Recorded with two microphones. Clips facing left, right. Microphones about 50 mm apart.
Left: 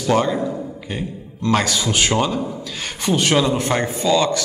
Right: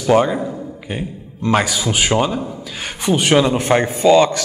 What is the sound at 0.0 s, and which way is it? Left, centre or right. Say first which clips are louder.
A man's voice: right 3 dB; centre.